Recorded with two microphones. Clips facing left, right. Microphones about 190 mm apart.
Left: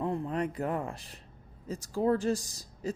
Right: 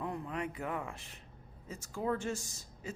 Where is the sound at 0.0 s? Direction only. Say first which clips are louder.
Left 7 dB; 35° left (ahead or behind).